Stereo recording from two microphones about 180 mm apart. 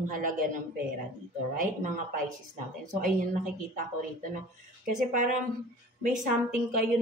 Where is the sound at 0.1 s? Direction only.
50° right (ahead or behind).